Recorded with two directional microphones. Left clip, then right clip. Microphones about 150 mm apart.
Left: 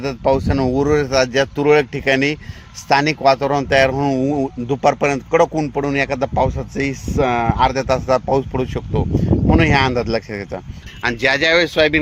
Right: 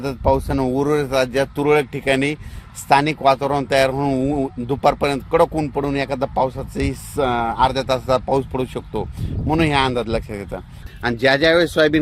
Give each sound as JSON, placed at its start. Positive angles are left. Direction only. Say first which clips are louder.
{"t": 0.0, "sound": "speech", "louder": "left 2 dB", "side_deg": 30}
{"t": 11.0, "sound": "speech", "louder": "even", "side_deg": -45}